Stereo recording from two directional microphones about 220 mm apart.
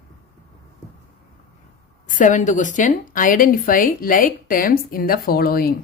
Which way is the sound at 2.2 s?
35° left (ahead or behind).